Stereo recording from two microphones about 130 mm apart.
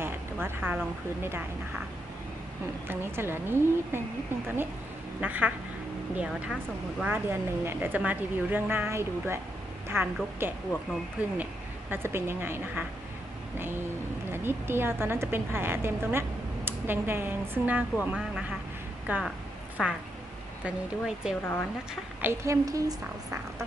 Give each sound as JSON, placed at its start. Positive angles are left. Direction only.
{"t": 0.0, "sound": "a sound", "side_deg": -15}
{"t": 2.9, "sound": "a woman's voice", "side_deg": -15}
{"t": 5.2, "sound": "a woman's voice", "side_deg": -10}
{"t": 14.3, "sound": "a woman's voice", "side_deg": -15}
{"t": 19.1, "sound": "a woman's voice", "side_deg": -15}
{"t": 21.4, "sound": "speech", "side_deg": 15}
{"t": 22.2, "sound": "a woman's voice", "side_deg": -25}